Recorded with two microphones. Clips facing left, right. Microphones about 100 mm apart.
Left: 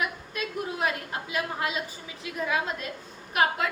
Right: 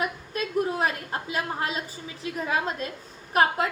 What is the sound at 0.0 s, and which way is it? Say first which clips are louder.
A woman's voice: right 2 dB; 40° right (ahead or behind).